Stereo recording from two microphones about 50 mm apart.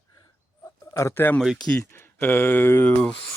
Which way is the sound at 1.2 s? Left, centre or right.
Left.